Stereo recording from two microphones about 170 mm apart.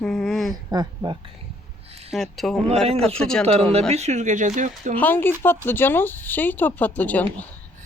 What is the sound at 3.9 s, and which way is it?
A woman's voice, 40° right (ahead or behind).